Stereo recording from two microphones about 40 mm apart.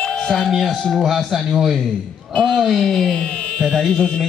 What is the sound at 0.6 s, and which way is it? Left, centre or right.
A man's voice, centre.